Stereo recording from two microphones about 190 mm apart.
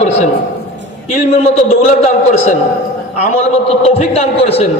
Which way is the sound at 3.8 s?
30° left (ahead or behind).